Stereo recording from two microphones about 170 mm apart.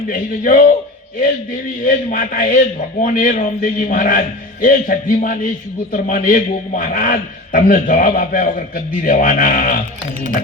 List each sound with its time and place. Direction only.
0.1 s a man's voice: 55° left (ahead or behind)
1.8 s a man's voice: 50° left (ahead or behind)